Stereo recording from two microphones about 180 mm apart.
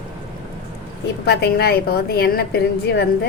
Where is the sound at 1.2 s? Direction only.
65° left (ahead or behind).